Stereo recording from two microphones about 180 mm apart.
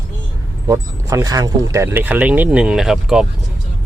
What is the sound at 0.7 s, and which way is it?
Speech, 20° right (ahead or behind).